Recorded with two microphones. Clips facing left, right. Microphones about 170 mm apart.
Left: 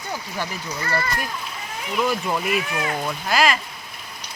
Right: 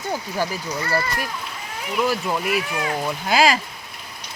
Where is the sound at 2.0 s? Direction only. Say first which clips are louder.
Right 1 dB; 5° right (ahead or behind).